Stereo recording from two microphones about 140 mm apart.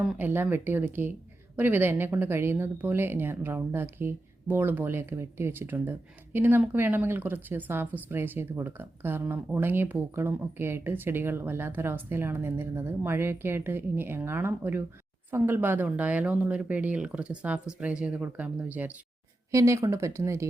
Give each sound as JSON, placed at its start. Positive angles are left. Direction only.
{"t": 0.0, "sound": "a woman's voice", "side_deg": -10}
{"t": 19.5, "sound": "speech", "side_deg": -20}